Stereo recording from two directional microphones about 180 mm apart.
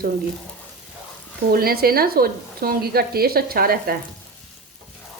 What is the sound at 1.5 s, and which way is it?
Frying, 55° right (ahead or behind).